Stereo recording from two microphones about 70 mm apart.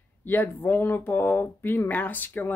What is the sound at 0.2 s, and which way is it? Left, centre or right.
Speech, left.